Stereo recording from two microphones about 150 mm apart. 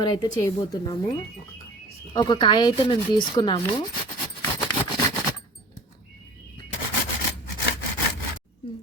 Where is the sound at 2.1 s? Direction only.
30° left (ahead or behind).